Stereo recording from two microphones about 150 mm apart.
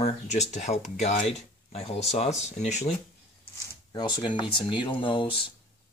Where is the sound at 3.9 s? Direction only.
30° left (ahead or behind).